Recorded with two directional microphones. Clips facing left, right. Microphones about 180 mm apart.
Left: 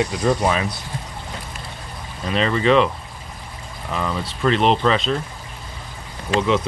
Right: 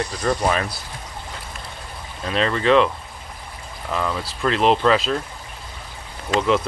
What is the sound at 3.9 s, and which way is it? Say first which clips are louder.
Speech: even; centre (ahead or behind).